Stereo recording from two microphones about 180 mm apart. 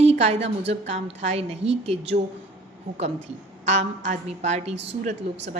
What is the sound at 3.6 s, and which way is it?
A woman's voice, 40° right (ahead or behind).